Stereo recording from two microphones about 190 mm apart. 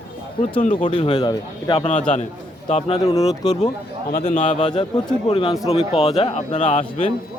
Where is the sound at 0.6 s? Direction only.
40° left (ahead or behind).